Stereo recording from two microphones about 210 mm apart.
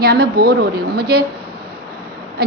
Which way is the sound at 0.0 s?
45° right (ahead or behind).